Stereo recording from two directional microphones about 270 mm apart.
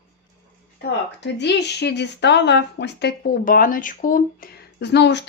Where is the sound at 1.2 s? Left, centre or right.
Left.